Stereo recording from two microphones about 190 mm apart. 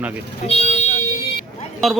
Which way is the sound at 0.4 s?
35° left (ahead or behind).